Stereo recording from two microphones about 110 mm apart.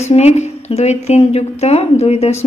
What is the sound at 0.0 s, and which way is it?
A woman's voice, 75° left (ahead or behind).